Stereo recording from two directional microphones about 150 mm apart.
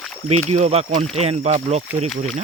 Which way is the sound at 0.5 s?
45° right (ahead or behind).